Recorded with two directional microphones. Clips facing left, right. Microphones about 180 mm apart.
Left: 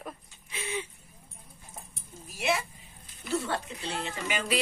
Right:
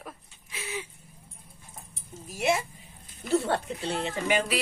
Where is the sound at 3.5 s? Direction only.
55° right (ahead or behind).